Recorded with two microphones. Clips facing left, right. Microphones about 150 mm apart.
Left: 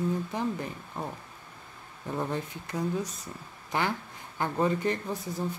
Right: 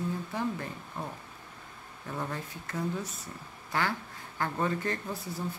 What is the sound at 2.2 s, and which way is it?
Speech, 20° left (ahead or behind).